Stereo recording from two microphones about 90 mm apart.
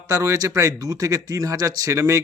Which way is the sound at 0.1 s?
35° right (ahead or behind).